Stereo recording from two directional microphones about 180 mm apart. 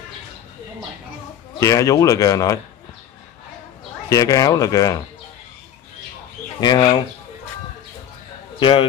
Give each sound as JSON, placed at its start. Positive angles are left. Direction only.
{"t": 1.6, "sound": "speech", "side_deg": 15}
{"t": 4.1, "sound": "speech", "side_deg": 20}
{"t": 6.6, "sound": "speech", "side_deg": 25}
{"t": 8.5, "sound": "speech", "side_deg": 30}